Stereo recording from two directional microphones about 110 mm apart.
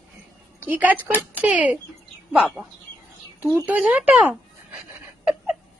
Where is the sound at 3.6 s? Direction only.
15° right (ahead or behind).